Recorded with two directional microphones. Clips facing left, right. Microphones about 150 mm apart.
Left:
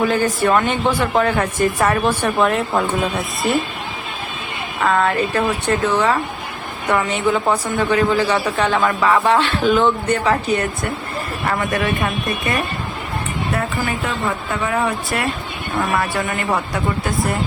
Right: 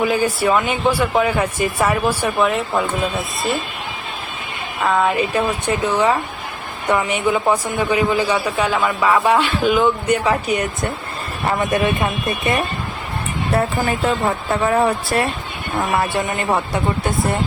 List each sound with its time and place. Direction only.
0.0 s a man's voice: 10° right (ahead or behind)
4.9 s a man's voice: 10° right (ahead or behind)
13.5 s speech: 35° right (ahead or behind)
15.8 s speech: 20° right (ahead or behind)